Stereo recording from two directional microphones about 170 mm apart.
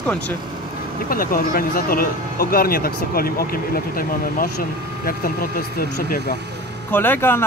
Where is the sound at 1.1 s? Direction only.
60° left (ahead or behind).